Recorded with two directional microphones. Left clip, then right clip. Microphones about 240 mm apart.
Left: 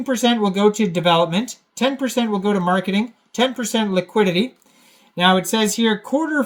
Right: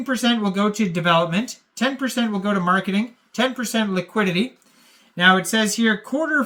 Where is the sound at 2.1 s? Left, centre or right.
Right.